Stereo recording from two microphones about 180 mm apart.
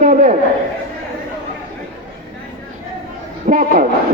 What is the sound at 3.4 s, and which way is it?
Speech, 45° right (ahead or behind).